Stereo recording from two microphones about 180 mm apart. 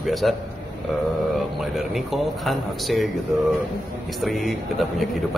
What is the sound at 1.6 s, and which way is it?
A man's voice, centre (ahead or behind).